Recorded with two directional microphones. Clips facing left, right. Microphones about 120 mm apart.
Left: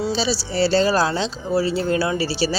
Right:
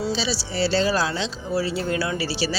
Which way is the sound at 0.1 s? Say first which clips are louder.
Left 4 dB; 40° left (ahead or behind).